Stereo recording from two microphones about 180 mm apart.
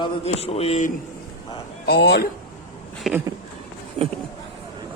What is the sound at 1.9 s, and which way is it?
Speech, 65° left (ahead or behind).